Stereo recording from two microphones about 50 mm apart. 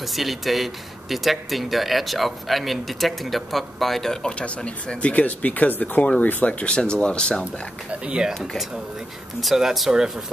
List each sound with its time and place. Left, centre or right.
0.0 s speech: centre
4.6 s speech: left
7.9 s speech: centre
9.4 s speech: centre